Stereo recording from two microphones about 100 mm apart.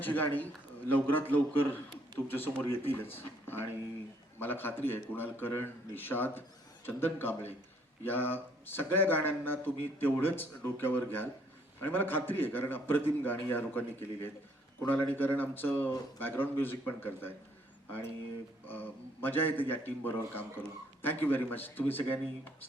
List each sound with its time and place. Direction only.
0.0 s a man's voice: 20° left (ahead or behind)
18.6 s a man's voice: 20° left (ahead or behind)